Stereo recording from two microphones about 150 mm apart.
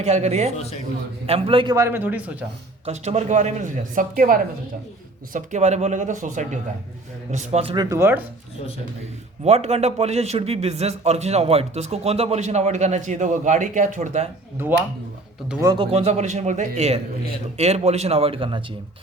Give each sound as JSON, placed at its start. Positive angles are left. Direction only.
{"t": 0.0, "sound": "a man's voice", "side_deg": -45}
{"t": 1.3, "sound": "speech", "side_deg": -35}
{"t": 1.7, "sound": "speech", "side_deg": -20}
{"t": 2.8, "sound": "a man's voice", "side_deg": -50}
{"t": 5.3, "sound": "a man's voice", "side_deg": -55}
{"t": 7.8, "sound": "speech", "side_deg": -20}
{"t": 9.4, "sound": "a man's voice", "side_deg": -45}
{"t": 15.6, "sound": "a man's voice", "side_deg": -30}